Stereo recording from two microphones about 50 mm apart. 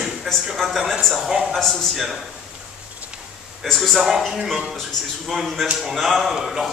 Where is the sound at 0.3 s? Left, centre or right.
Centre.